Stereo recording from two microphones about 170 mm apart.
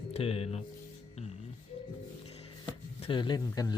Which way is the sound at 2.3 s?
35° left (ahead or behind).